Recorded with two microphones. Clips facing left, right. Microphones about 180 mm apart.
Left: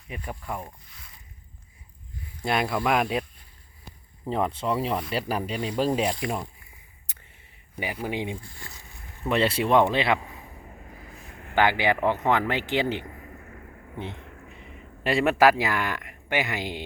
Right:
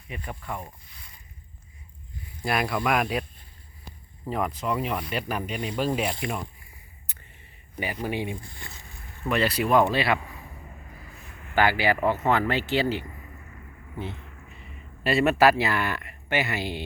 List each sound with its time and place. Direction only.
0.1 s speech: 5° left (ahead or behind)
2.4 s speech: 25° left (ahead or behind)
4.3 s speech: 30° left (ahead or behind)
7.8 s speech: 15° left (ahead or behind)
8.5 s speech: 25° right (ahead or behind)
9.2 s speech: 25° left (ahead or behind)
11.5 s speech: 15° left (ahead or behind)
13.4 s a sound: 55° left (ahead or behind)
14.6 s speech: 15° left (ahead or behind)